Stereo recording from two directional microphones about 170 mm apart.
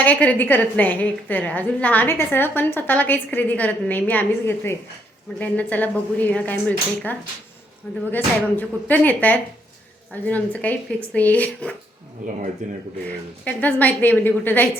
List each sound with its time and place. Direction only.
0.0 s a woman's voice: 10° left (ahead or behind)
12.6 s speech: 45° right (ahead or behind)
13.1 s a woman's voice: 10° left (ahead or behind)